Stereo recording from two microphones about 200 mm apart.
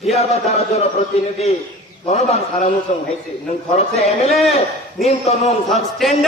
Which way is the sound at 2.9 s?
35° left (ahead or behind).